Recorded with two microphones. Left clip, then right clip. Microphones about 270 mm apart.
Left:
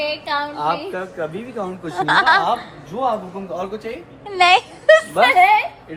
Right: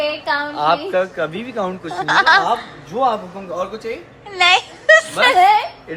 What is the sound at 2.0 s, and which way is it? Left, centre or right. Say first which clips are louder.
A woman's voice: right 1 dB; centre.